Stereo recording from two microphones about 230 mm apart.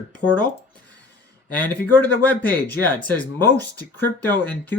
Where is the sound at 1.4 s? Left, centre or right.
Centre.